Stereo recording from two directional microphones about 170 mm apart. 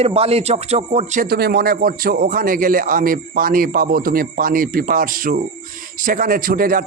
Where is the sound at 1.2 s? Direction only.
65° right (ahead or behind).